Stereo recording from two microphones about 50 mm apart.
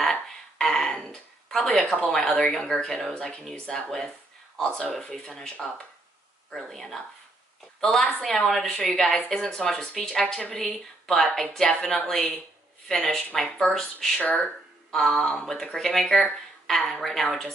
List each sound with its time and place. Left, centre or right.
0.0 s music: centre
1.1 s speech: centre
14.9 s speech: centre